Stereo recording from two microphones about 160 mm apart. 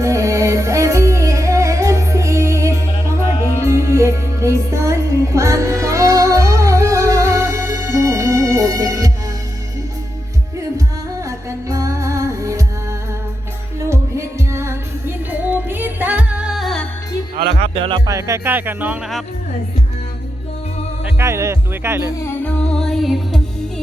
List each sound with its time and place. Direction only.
0.0 s music: 20° right (ahead or behind)
10.6 s music: 20° right (ahead or behind); by 16.8 s centre (ahead or behind)
17.6 s music: 35° right (ahead or behind)
18.0 s music: 20° right (ahead or behind)
21.0 s music: 15° right (ahead or behind)
22.2 s music: 10° left (ahead or behind)